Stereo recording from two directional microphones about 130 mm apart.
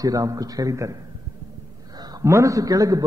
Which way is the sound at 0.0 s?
25° right (ahead or behind).